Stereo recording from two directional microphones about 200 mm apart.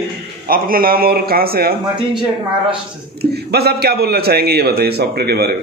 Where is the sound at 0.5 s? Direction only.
45° right (ahead or behind).